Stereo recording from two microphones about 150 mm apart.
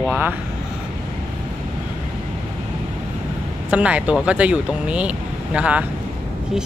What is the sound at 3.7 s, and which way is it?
Speech, 10° right (ahead or behind).